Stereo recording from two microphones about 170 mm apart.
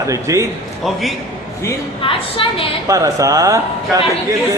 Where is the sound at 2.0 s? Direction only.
30° left (ahead or behind).